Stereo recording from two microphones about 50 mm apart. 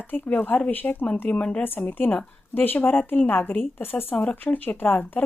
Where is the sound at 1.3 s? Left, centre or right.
Left.